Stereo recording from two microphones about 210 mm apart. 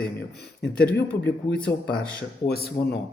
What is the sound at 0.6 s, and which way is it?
Speech, 5° left (ahead or behind).